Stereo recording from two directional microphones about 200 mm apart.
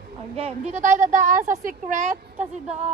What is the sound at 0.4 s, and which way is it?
A woman's voice, 35° right (ahead or behind).